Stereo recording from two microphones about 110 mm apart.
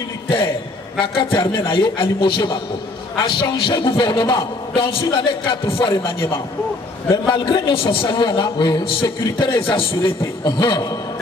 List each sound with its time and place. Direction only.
0.9 s a man's voice: 50° left (ahead or behind)